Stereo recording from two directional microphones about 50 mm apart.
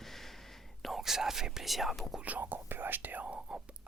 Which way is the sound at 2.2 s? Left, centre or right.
Right.